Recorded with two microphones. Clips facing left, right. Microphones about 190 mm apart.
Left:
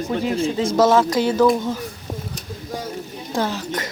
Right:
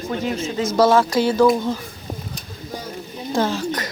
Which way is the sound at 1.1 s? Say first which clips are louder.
Right 1 dB; 20° left (ahead or behind).